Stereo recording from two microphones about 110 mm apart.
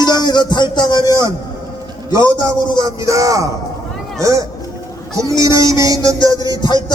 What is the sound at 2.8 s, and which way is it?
Speech, 30° right (ahead or behind).